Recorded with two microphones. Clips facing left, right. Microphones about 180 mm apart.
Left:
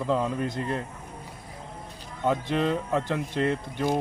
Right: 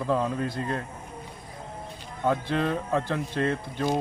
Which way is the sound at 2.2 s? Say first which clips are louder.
Left 1 dB; 15° left (ahead or behind).